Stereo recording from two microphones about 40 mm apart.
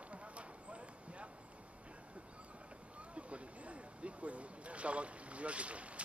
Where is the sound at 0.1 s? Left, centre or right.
Right.